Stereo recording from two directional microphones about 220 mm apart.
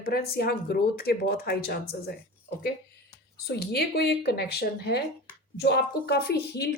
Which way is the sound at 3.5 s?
45° left (ahead or behind).